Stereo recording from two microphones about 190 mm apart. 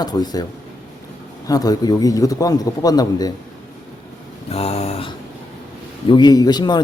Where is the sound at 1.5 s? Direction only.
20° left (ahead or behind).